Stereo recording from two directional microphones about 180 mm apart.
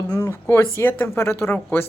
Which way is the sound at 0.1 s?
15° left (ahead or behind).